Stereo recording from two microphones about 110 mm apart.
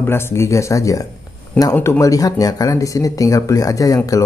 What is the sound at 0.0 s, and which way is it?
Speech, 25° left (ahead or behind).